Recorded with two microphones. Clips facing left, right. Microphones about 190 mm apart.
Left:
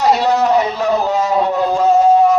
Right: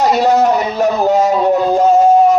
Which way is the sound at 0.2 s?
45° right (ahead or behind).